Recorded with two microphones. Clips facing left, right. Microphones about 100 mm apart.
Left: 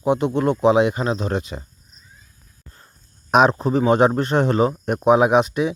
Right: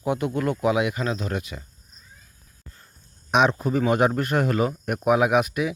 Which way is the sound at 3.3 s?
40° left (ahead or behind).